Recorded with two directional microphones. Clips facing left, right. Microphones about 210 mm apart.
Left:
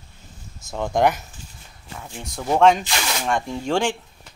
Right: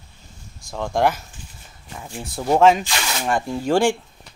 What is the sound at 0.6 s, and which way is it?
Speech, 5° left (ahead or behind).